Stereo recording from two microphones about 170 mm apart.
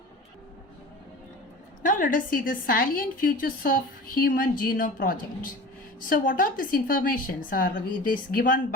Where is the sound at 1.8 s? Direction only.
50° left (ahead or behind).